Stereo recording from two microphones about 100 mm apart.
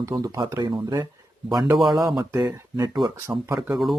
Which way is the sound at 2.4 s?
40° right (ahead or behind).